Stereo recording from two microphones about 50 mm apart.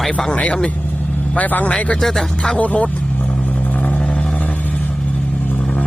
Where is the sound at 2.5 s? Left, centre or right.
Left.